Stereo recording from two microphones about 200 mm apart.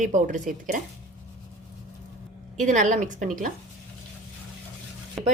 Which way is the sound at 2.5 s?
40° right (ahead or behind).